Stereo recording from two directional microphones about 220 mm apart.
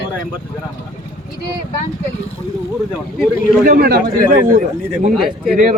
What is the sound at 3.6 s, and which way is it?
A man's voice, 40° right (ahead or behind).